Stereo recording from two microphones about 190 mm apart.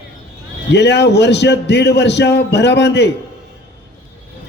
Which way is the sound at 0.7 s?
65° left (ahead or behind).